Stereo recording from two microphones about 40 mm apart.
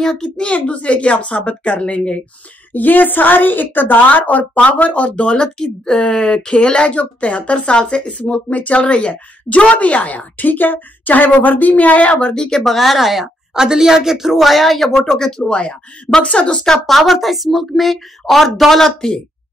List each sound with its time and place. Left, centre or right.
0.0 s a woman's voice: centre
0.6 s speech: left
2.7 s a woman's voice: left
12.4 s a woman's voice: centre
15.0 s speech: centre
16.8 s speech: centre
18.9 s speech: centre